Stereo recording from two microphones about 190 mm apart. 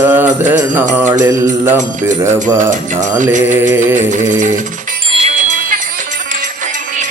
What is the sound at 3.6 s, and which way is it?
Music, 10° right (ahead or behind).